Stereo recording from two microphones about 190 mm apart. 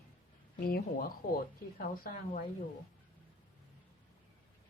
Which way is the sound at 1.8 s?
40° left (ahead or behind).